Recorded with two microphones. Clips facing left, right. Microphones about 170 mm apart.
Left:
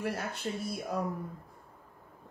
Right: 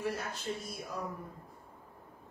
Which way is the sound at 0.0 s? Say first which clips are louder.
Left 2 dB; 60° left (ahead or behind).